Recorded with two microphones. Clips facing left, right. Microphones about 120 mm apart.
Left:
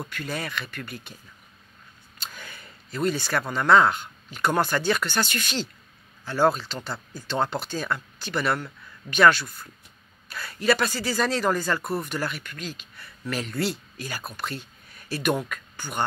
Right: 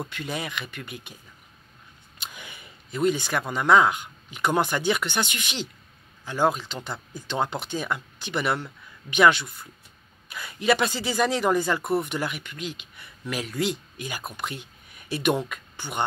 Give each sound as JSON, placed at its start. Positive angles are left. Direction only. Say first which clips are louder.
{"t": 0.0, "sound": "speech", "louder": "even", "side_deg": -20}
{"t": 2.2, "sound": "speech", "louder": "left 1 dB", "side_deg": -15}